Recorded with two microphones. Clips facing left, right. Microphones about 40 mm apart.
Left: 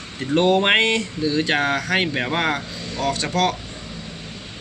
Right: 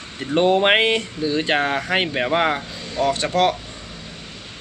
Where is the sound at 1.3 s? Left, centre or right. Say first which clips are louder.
Even; right.